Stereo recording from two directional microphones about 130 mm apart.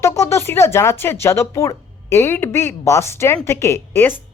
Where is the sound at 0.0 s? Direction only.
25° left (ahead or behind).